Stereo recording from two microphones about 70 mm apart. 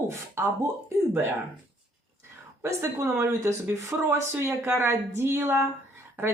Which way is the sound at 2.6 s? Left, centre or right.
Right.